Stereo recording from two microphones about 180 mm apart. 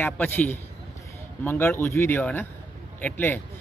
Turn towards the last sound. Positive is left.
turn(degrees=10)  # may be behind; listen again after turning